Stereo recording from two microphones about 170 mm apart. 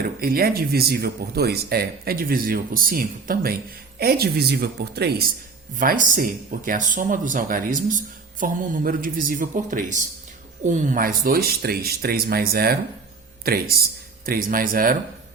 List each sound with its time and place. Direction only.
0.0 s speech: 60° right (ahead or behind)
5.7 s speech: 50° right (ahead or behind)